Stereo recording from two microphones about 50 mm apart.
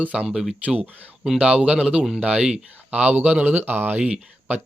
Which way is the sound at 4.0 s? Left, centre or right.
Right.